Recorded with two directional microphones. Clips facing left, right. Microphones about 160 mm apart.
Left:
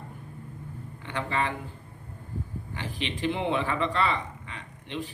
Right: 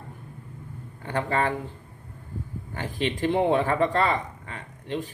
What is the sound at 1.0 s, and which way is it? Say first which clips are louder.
Speech: right 4 dB; 45° right (ahead or behind).